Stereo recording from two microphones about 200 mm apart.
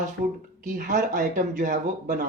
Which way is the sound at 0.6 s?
40° right (ahead or behind).